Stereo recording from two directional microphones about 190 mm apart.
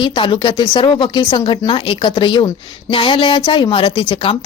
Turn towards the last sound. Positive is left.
turn(degrees=25)  # may be behind; listen again after turning